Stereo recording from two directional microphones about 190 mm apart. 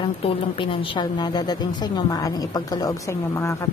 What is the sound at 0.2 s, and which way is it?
A woman's voice, 25° left (ahead or behind).